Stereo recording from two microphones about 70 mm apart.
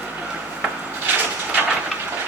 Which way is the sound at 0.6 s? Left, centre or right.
Right.